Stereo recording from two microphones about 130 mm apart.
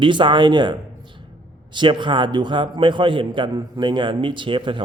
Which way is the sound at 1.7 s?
40° right (ahead or behind).